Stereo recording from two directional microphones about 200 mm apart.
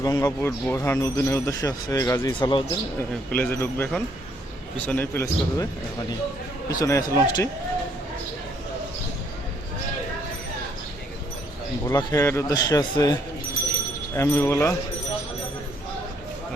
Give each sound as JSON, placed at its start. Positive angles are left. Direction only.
{"t": 0.0, "sound": "speech", "side_deg": 20}
{"t": 3.3, "sound": "speech", "side_deg": 10}
{"t": 4.9, "sound": "speech", "side_deg": 10}
{"t": 6.7, "sound": "speech", "side_deg": 15}
{"t": 11.9, "sound": "speech", "side_deg": 15}
{"t": 14.2, "sound": "speech", "side_deg": 10}